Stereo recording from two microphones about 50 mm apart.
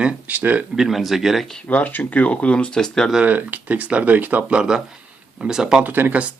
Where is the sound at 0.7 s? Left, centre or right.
Centre.